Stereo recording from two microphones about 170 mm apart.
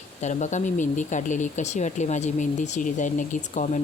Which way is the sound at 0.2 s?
45° left (ahead or behind).